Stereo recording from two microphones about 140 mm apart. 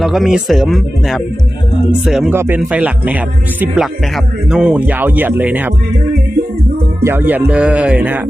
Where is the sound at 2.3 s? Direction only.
15° right (ahead or behind).